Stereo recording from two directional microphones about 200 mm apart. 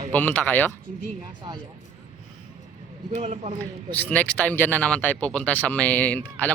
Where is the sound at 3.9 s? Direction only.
10° left (ahead or behind).